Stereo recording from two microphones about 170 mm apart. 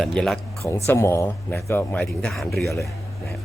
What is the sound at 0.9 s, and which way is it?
Speech, 15° left (ahead or behind).